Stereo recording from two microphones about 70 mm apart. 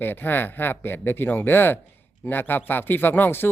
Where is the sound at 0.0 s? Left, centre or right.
Left.